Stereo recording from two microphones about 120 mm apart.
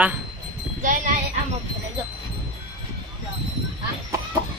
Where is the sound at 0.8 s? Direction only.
90° right.